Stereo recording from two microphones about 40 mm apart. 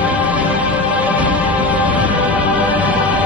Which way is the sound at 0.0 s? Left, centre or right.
Right.